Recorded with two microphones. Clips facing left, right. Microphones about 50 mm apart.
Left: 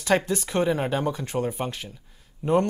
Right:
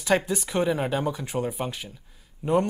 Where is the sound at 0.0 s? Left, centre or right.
Centre.